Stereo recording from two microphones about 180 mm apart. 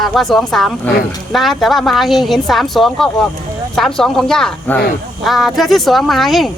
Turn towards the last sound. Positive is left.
turn(degrees=0)  # may be behind; listen again after turning